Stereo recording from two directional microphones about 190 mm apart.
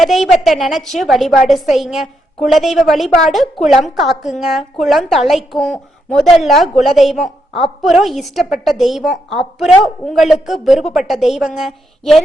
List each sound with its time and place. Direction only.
0.0 s a woman's voice: centre (ahead or behind)